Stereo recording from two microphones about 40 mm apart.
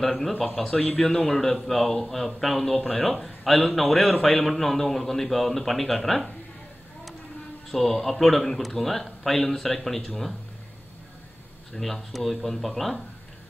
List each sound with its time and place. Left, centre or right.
0.0 s a man's voice: centre
7.7 s a man's voice: centre
11.7 s a man's voice: centre